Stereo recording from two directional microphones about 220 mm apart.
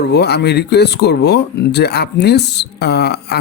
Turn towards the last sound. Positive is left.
turn(degrees=45)  # may be behind; listen again after turning